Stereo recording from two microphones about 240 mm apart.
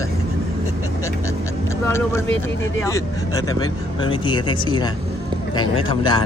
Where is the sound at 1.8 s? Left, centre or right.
Centre.